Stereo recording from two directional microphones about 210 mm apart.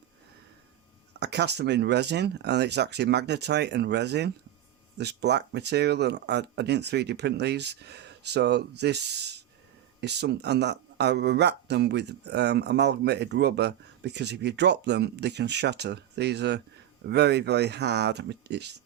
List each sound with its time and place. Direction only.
1.2 s speech: 55° right (ahead or behind)